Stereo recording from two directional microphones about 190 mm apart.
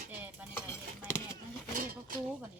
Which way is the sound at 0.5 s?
15° left (ahead or behind).